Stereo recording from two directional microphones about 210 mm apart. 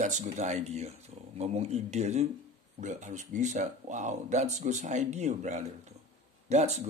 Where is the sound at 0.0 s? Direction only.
35° right (ahead or behind).